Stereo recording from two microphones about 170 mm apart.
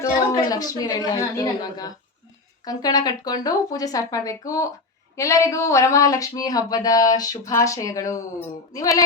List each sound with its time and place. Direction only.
0.0 s speech: 20° left (ahead or behind)